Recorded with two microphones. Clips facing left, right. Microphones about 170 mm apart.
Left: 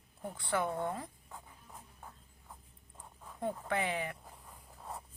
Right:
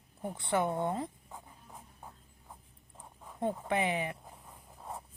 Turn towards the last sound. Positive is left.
turn(degrees=-10)  # may be behind; listen again after turning